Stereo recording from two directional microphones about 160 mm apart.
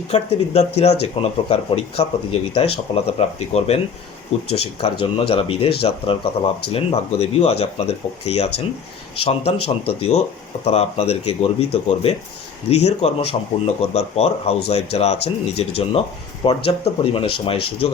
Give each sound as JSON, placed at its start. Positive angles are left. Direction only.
{"t": 0.1, "sound": "speech", "side_deg": 40}